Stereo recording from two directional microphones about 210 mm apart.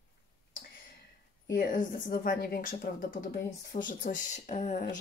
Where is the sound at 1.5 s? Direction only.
40° left (ahead or behind).